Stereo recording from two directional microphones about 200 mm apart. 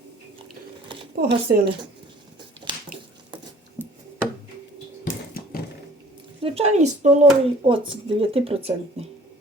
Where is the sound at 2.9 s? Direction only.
45° right (ahead or behind).